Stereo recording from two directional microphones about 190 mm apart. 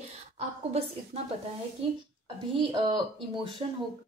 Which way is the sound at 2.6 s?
25° right (ahead or behind).